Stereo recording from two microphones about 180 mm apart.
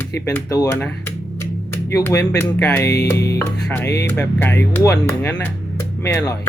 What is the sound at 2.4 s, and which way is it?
Speech, 10° left (ahead or behind).